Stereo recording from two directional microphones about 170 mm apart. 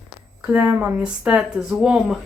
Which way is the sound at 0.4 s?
10° right (ahead or behind).